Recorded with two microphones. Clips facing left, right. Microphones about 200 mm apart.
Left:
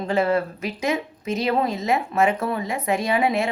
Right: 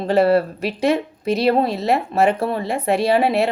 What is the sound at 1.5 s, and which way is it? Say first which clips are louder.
Speech: right 4 dB; 35° right (ahead or behind).